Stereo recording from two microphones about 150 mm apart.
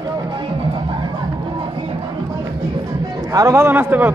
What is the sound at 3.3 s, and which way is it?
Speech, 20° right (ahead or behind).